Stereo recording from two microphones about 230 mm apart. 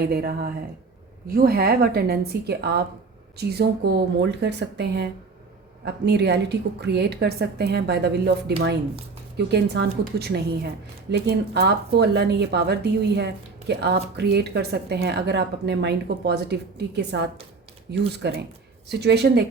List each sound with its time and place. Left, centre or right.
0.1 s a woman's voice: right